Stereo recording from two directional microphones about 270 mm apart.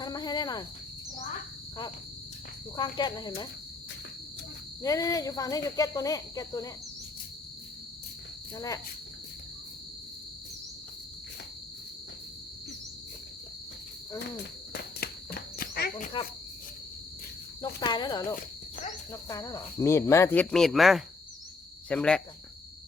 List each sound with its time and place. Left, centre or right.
0.0 s cricket: centre
2.7 s speech: centre
4.8 s speech: centre
8.5 s speech: centre
14.7 s insect: left
17.6 s speech: centre